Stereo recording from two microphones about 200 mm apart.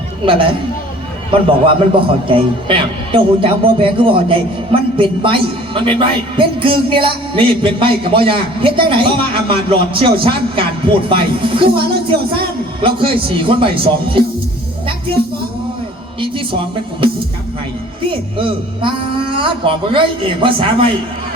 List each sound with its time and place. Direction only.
0.3 s a man's voice: 25° right (ahead or behind)
12.8 s a man's voice: 25° right (ahead or behind)
18.3 s a man's voice: 25° right (ahead or behind)